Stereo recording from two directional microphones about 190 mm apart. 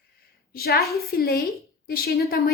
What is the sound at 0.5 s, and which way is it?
A woman's voice, 55° left (ahead or behind).